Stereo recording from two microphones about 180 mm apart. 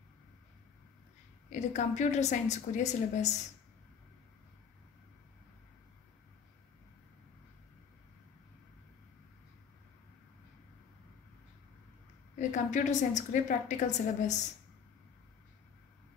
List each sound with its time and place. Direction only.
1.5 s a woman's voice: 40° left (ahead or behind)
12.4 s a woman's voice: 45° left (ahead or behind)